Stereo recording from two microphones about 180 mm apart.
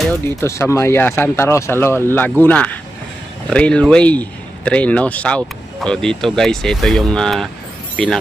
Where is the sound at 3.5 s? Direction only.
5° left (ahead or behind).